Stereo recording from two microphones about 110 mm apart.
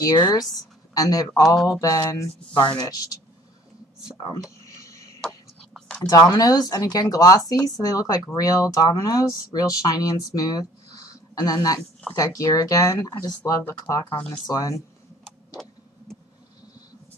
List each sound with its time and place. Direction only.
0.0 s speech: 35° left (ahead or behind)
4.6 s a sound: 30° left (ahead or behind)
5.2 s a sound: 5° left (ahead or behind)
5.9 s speech: 30° left (ahead or behind)
13.5 s speech: 20° left (ahead or behind)
14.5 s speech: 30° left (ahead or behind)